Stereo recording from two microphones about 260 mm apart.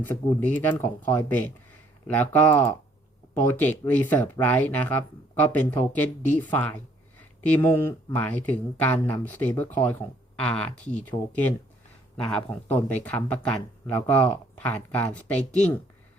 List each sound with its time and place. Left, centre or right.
0.0 s speech: centre